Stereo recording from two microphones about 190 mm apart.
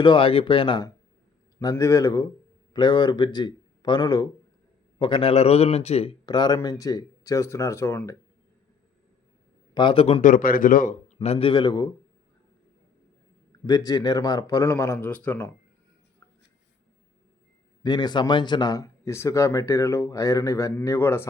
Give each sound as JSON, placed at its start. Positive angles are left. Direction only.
{"t": 0.0, "sound": "a man's voice", "side_deg": 25}
{"t": 6.2, "sound": "speech", "side_deg": 20}
{"t": 9.7, "sound": "speech", "side_deg": 25}
{"t": 10.2, "sound": "a man's voice", "side_deg": 45}
{"t": 13.7, "sound": "speech", "side_deg": 20}
{"t": 17.8, "sound": "speech", "side_deg": 25}